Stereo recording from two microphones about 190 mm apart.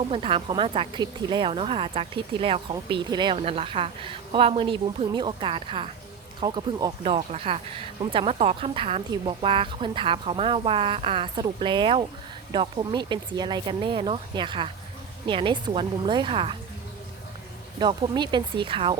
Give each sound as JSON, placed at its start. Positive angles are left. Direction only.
{"t": 0.1, "sound": "speech", "side_deg": -30}
{"t": 17.7, "sound": "speech", "side_deg": -25}